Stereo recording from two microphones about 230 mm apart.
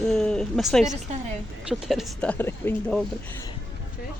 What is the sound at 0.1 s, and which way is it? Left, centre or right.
Speech, centre.